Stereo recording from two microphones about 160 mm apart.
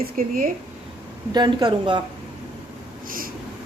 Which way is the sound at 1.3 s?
25° right (ahead or behind).